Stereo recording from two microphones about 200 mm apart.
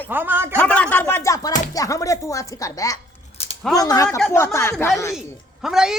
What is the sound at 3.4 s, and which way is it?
Scissors, 30° left (ahead or behind).